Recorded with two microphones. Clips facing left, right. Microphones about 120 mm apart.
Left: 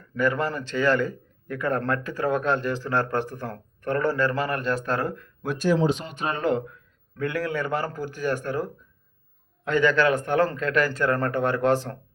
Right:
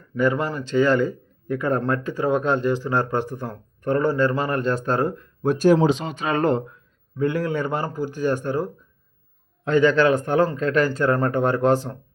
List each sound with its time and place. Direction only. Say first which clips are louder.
0.2 s speech: right 3 dB; 20° right (ahead or behind)
5.5 s speech: right 6 dB; 50° right (ahead or behind)
5.8 s speech: right 4 dB; 90° right
7.2 s speech: right 4 dB; 25° right (ahead or behind)